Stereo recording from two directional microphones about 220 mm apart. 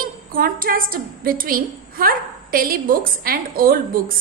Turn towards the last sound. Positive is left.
turn(degrees=-40)  # may be behind; listen again after turning